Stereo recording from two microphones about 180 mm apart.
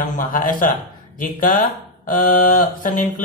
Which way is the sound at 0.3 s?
50° left (ahead or behind).